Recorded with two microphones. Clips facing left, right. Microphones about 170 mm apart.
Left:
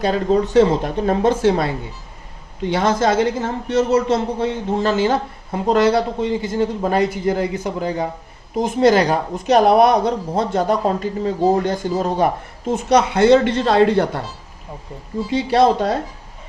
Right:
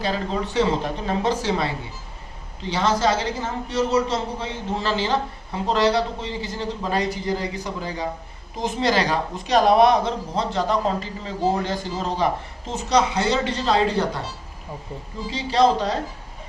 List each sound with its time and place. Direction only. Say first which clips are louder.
0.0 s a man's voice: left 8 dB; 50° left (ahead or behind)
15.3 s speech: left 4 dB; 55° left (ahead or behind)